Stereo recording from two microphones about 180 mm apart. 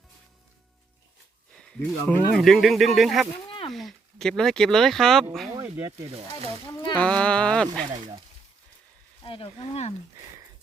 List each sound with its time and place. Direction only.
1.5 s speech: 5° left (ahead or behind)
5.5 s speech: 15° right (ahead or behind)
6.1 s speech: 35° right (ahead or behind)
6.9 s speech: 5° left (ahead or behind)
7.9 s speech: 25° right (ahead or behind)
9.2 s speech: 30° left (ahead or behind)